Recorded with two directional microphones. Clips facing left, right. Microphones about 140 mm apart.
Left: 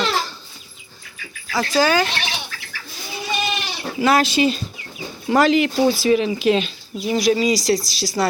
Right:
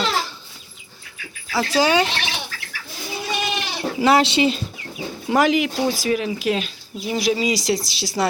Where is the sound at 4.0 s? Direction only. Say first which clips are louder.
Even; 25° right (ahead or behind).